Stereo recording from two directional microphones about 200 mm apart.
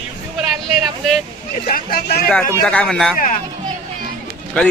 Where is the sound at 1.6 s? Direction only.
45° left (ahead or behind).